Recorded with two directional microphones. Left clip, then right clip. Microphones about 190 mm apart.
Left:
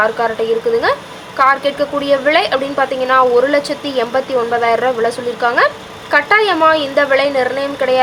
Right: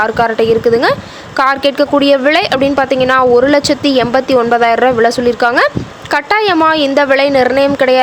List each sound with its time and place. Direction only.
0.0 s a woman's voice: 45° right (ahead or behind)